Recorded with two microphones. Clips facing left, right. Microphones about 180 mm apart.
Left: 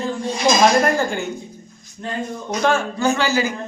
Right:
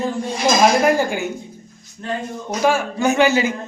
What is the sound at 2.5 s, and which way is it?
Speech, 10° right (ahead or behind).